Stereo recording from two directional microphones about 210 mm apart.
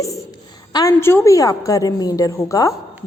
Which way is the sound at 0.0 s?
15° left (ahead or behind).